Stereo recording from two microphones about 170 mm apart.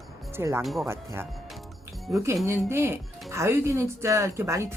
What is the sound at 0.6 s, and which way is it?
Speech, centre (ahead or behind).